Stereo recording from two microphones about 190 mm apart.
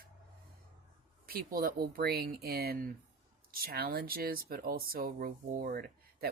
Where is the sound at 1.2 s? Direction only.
50° right (ahead or behind).